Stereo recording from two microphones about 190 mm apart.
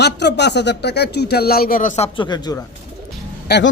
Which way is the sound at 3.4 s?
60° left (ahead or behind).